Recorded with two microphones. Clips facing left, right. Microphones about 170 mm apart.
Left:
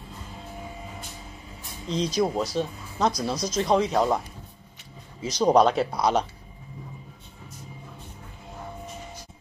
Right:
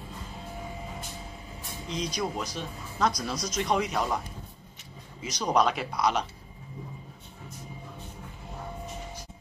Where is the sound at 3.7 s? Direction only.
25° left (ahead or behind).